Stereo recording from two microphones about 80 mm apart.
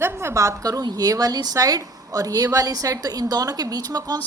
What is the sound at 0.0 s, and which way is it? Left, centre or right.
A woman's voice, right.